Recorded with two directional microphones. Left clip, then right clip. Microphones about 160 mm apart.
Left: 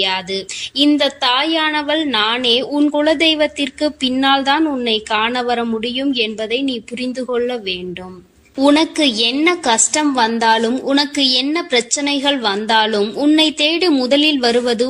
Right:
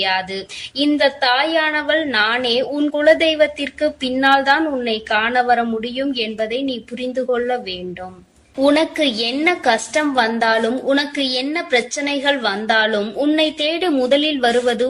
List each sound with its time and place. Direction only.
0.0 s speech: 50° left (ahead or behind)